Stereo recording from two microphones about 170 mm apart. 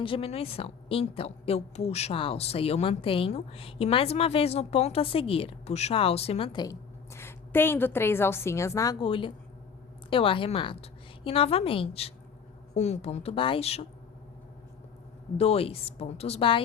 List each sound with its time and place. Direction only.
0.0 s a woman's voice: 35° left (ahead or behind)
15.4 s a woman's voice: 35° left (ahead or behind)